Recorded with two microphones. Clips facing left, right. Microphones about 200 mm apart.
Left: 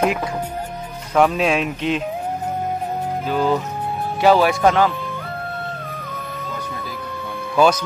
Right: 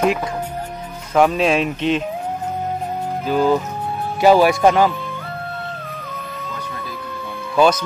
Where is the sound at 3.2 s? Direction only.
5° right (ahead or behind).